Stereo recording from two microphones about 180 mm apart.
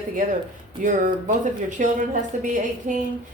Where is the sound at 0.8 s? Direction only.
45° right (ahead or behind).